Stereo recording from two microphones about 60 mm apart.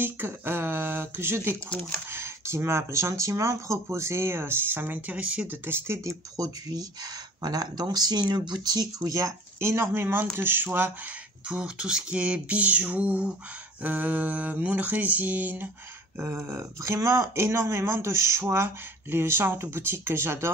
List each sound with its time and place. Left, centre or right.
0.0 s speech: right
5.5 s speech: right
6.0 s speech: right
9.6 s speech: right
11.4 s a sound: centre; by 15.7 s right
16.2 s speech: right